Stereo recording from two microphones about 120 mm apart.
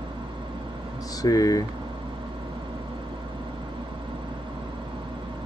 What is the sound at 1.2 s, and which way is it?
Speech, 30° left (ahead or behind).